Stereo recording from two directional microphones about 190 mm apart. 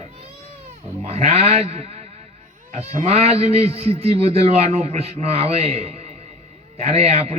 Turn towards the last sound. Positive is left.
turn(degrees=-30)  # may be behind; listen again after turning